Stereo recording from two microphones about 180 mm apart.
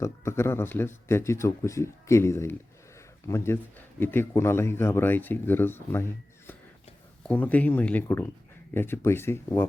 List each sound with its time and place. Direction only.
0.0 s speech: 15° left (ahead or behind)
7.3 s speech: 10° left (ahead or behind)